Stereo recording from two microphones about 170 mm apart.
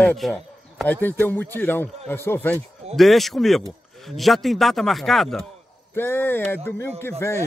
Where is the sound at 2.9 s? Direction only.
Centre (ahead or behind).